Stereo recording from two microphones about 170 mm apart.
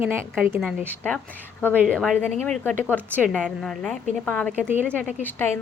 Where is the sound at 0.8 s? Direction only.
10° left (ahead or behind).